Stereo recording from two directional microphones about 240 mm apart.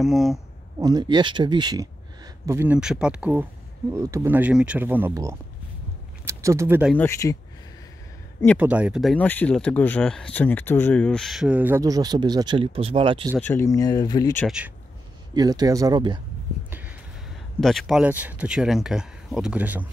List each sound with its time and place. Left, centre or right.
0.0 s speech: centre
0.7 s speech: centre
7.0 s speech: centre
8.5 s speech: centre; by 13.3 s right
13.4 s speech: centre
15.3 s speech: centre
17.6 s speech: centre